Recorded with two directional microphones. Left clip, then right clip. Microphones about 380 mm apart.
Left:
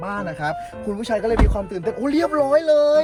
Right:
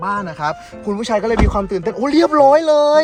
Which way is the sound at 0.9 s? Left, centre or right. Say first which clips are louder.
Right 4 dB; centre.